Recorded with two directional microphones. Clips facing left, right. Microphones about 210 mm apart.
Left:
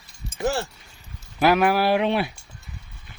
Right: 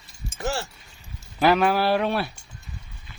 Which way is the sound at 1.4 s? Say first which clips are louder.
Left 1 dB; 10° left (ahead or behind).